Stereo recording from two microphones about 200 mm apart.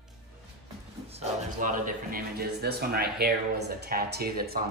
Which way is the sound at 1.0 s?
30° right (ahead or behind).